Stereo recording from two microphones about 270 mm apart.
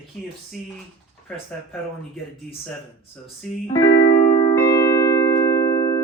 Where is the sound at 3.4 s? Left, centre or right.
Centre.